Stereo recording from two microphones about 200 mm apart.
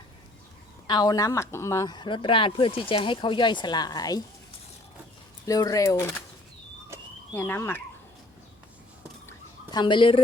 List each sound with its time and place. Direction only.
0.9 s speech: 20° left (ahead or behind)
5.5 s speech: 20° left (ahead or behind)
7.3 s speech: 10° left (ahead or behind)
9.2 s a sound: 20° left (ahead or behind)